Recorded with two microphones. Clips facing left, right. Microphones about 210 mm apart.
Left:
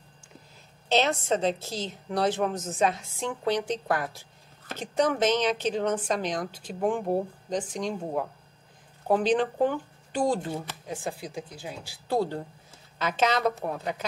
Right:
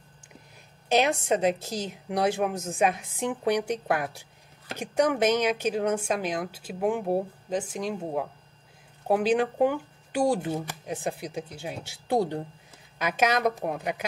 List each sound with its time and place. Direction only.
0.8 s a woman's voice: 10° right (ahead or behind)